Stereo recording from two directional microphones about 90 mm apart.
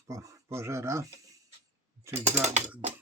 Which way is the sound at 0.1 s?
35° right (ahead or behind).